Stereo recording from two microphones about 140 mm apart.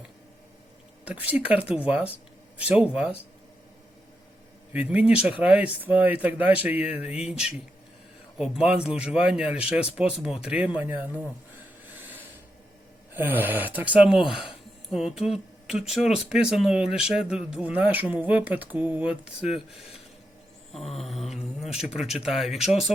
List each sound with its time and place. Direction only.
1.0 s speech: 10° right (ahead or behind)
4.7 s speech: 10° right (ahead or behind)
13.1 s speech: 15° right (ahead or behind)
14.3 s speech: 35° left (ahead or behind)
15.1 s mantra: 5° right (ahead or behind)
15.8 s speech: 5° right (ahead or behind)
20.7 s mantra: centre (ahead or behind)